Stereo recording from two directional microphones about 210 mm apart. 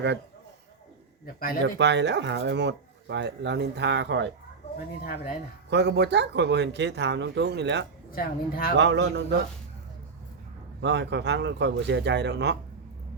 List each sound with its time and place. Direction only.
1.2 s speech: 45° left (ahead or behind)
1.6 s speech: 55° right (ahead or behind)
5.0 s speech: 45° left (ahead or behind)
5.7 s speech: 55° right (ahead or behind)
8.1 s speech: 45° left (ahead or behind)
8.8 s speech: 55° right (ahead or behind)
10.8 s speech: 55° right (ahead or behind)